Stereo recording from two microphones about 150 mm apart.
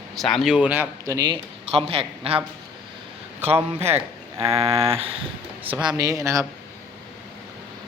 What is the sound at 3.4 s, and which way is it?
Speech, 45° right (ahead or behind).